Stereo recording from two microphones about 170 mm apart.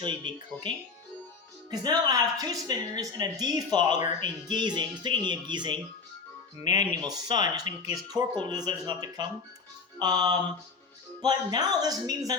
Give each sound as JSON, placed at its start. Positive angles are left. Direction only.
{"t": 0.0, "sound": "speech", "side_deg": -30}
{"t": 1.7, "sound": "speech", "side_deg": -25}